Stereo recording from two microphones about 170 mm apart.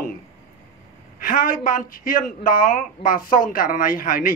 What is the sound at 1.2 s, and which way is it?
Speech, 55° left (ahead or behind).